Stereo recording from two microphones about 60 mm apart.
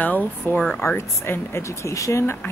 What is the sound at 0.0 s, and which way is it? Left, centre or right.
Speech, left.